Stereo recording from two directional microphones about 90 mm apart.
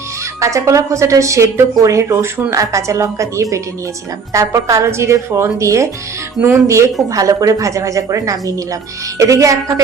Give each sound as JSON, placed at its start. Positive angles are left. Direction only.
{"t": 0.3, "sound": "speech", "side_deg": -35}